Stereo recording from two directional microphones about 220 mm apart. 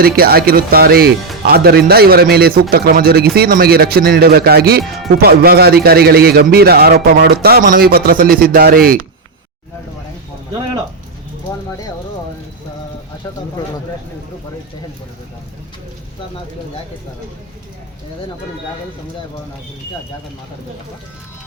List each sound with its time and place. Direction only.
0.0 s a man's voice: 45° right (ahead or behind)